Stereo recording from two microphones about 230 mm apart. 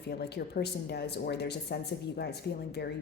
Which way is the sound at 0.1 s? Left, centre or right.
Left.